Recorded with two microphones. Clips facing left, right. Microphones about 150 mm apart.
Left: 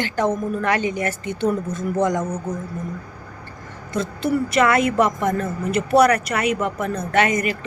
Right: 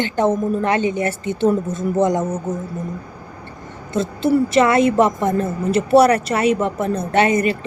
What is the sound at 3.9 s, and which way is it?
A woman's voice, 25° right (ahead or behind).